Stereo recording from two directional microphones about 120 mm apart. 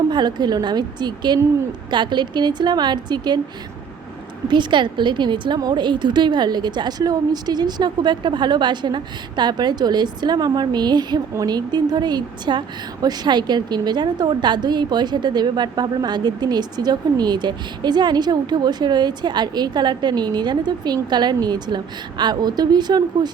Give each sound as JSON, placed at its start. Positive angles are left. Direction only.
{"t": 0.1, "sound": "a woman's voice", "side_deg": -35}
{"t": 4.4, "sound": "a woman's voice", "side_deg": -40}